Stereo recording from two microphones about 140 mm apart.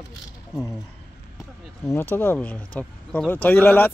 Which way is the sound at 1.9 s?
15° left (ahead or behind).